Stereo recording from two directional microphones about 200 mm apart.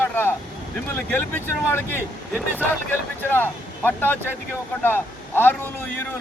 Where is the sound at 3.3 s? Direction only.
10° left (ahead or behind).